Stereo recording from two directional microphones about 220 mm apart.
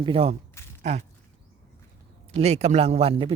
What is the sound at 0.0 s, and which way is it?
A man's voice, 25° right (ahead or behind).